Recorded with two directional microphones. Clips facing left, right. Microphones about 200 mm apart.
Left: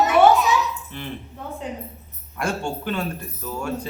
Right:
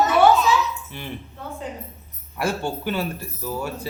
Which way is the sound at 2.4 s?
5° right (ahead or behind).